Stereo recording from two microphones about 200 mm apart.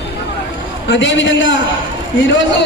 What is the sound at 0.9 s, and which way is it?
A man's voice, 65° left (ahead or behind).